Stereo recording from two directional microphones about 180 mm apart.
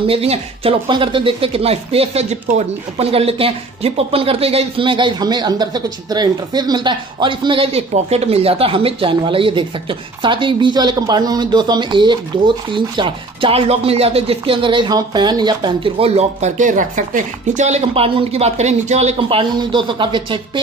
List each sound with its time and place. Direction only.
0.0 s speech: 35° right (ahead or behind)